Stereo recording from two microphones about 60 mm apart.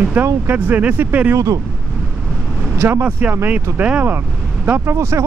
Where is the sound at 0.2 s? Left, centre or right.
Right.